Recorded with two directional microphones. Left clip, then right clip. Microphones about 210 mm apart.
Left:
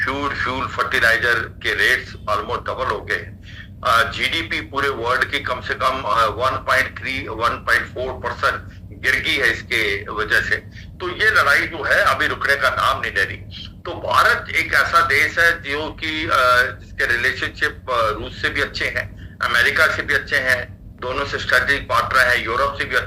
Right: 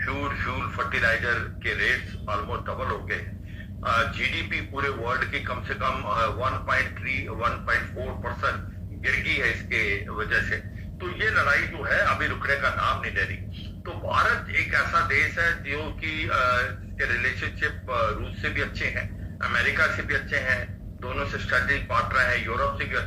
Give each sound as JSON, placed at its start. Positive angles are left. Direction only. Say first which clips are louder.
{"t": 0.0, "sound": "a man's voice", "louder": "left 8 dB", "side_deg": 40}